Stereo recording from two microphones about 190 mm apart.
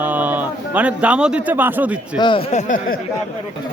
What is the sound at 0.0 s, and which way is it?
A man's voice, 10° right (ahead or behind).